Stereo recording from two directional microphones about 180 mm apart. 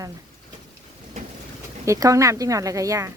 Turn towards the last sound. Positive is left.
turn(degrees=-20)  # may be behind; listen again after turning